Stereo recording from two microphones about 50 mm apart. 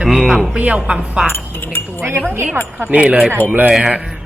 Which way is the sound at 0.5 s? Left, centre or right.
Right.